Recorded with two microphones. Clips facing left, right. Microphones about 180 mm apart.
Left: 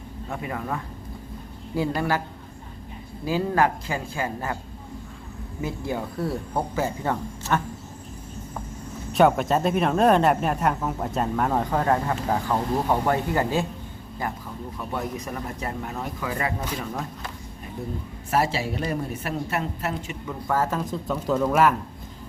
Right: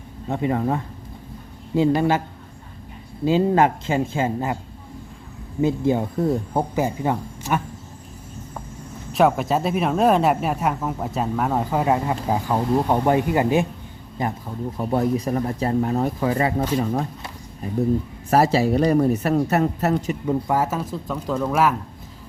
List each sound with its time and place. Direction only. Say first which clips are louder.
0.3 s speech: right 9 dB; 30° right (ahead or behind)
3.2 s speech: right 5 dB; 20° right (ahead or behind)
5.6 s speech: right 9 dB; 25° right (ahead or behind)
9.1 s speech: right 1 dB; centre (ahead or behind); by 14.3 s 20° right (ahead or behind)
14.8 s speech: right 10 dB; 35° right (ahead or behind)
18.3 s speech: right 7 dB; 40° right (ahead or behind)
20.5 s speech: right 2 dB; 10° right (ahead or behind)